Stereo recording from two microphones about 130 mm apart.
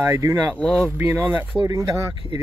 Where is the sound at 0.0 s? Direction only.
20° right (ahead or behind).